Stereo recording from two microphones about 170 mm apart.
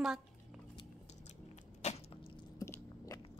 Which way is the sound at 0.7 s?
35° left (ahead or behind).